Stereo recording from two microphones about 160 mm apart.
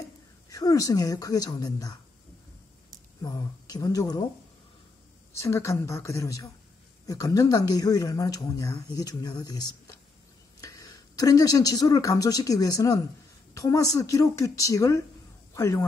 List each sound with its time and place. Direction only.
0.5 s speech: 20° left (ahead or behind)
3.2 s speech: 20° left (ahead or behind)
5.4 s speech: 20° left (ahead or behind)